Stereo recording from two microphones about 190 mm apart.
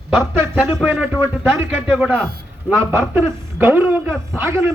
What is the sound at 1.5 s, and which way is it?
Speech, 10° right (ahead or behind).